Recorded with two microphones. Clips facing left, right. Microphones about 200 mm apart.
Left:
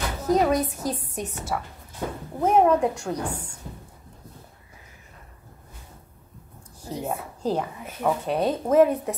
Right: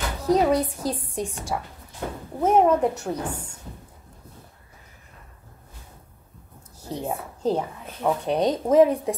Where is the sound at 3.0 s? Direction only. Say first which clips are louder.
Even; 10° right (ahead or behind).